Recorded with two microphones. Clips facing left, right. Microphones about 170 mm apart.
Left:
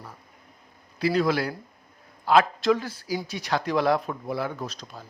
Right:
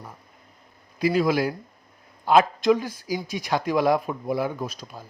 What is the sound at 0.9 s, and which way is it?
A man's voice, 15° right (ahead or behind).